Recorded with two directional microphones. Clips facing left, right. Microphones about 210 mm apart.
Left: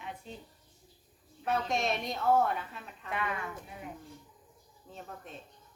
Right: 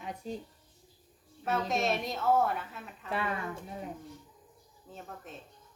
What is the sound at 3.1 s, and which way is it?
Speech, 35° right (ahead or behind).